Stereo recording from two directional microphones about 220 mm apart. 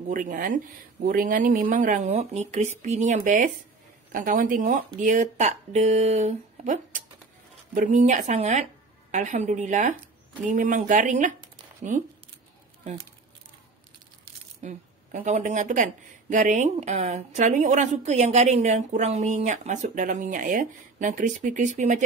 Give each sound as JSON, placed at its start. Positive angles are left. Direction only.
{"t": 0.1, "sound": "speech", "side_deg": -40}
{"t": 14.6, "sound": "speech", "side_deg": -35}